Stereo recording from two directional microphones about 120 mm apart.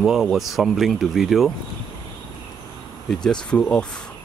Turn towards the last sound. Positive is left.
turn(degrees=10)  # may be behind; listen again after turning